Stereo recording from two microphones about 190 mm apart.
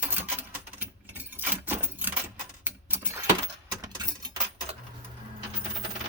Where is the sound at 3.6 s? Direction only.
20° right (ahead or behind).